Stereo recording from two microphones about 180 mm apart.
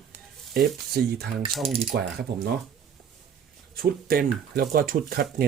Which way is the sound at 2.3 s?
65° right (ahead or behind).